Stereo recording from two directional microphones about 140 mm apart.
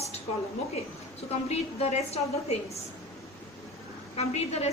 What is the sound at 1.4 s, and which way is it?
A woman's voice, 50° left (ahead or behind).